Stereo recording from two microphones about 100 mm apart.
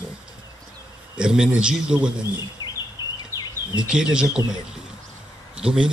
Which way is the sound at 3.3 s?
25° right (ahead or behind).